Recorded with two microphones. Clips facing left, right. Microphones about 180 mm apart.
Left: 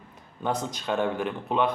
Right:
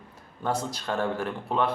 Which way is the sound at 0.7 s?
20° left (ahead or behind).